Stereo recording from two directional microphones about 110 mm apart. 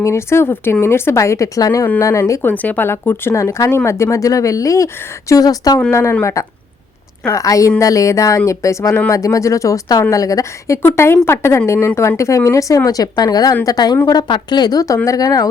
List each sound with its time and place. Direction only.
0.0 s speech: 25° left (ahead or behind)
2.5 s speech: 15° left (ahead or behind); by 15.4 s 35° left (ahead or behind)